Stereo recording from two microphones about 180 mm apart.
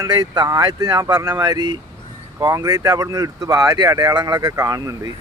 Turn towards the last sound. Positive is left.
turn(degrees=-20)  # may be behind; listen again after turning